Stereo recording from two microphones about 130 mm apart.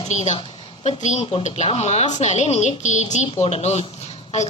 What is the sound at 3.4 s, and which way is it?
Speech, 55° left (ahead or behind).